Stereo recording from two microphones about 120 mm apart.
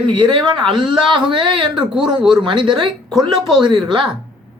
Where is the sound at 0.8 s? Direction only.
40° right (ahead or behind).